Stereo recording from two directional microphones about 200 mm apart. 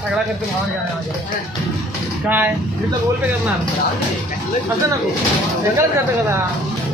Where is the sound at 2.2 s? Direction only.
10° right (ahead or behind).